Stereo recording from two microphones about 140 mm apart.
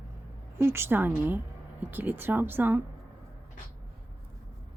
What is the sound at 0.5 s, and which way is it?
Speech, 15° right (ahead or behind).